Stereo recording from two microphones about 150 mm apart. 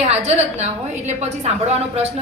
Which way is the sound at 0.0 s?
45° right (ahead or behind).